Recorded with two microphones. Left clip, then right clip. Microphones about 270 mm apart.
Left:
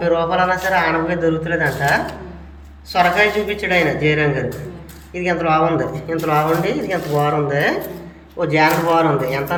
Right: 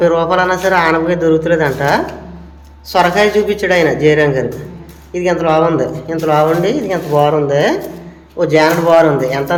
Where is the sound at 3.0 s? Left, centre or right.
Centre.